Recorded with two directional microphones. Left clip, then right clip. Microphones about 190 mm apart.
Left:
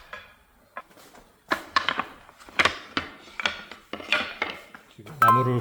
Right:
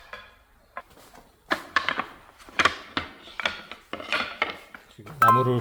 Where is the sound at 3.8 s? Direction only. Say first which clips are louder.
Left 2 dB; 15° right (ahead or behind).